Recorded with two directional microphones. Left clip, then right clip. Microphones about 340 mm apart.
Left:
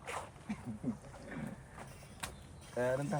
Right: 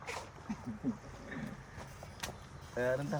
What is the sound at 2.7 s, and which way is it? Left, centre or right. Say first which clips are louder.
Speech: right 1 dB; left.